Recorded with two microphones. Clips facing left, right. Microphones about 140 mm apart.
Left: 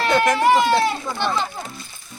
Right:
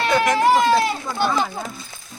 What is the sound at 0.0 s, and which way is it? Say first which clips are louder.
Run: left 1 dB; 5° right (ahead or behind).